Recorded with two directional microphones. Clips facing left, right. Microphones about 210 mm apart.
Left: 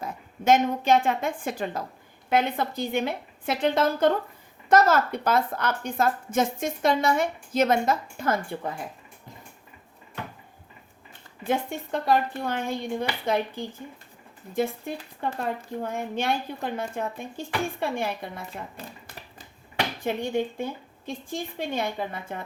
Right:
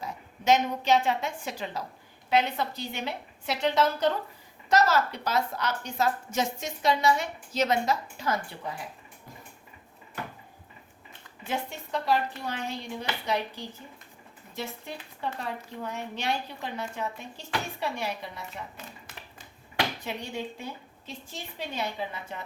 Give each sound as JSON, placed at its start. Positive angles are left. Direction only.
{"t": 0.0, "sound": "a woman's voice", "side_deg": 50}
{"t": 11.4, "sound": "speech", "side_deg": 50}
{"t": 20.0, "sound": "speech", "side_deg": 50}